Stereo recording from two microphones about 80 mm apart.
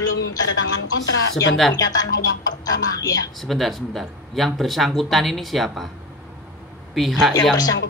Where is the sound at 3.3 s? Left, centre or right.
Centre.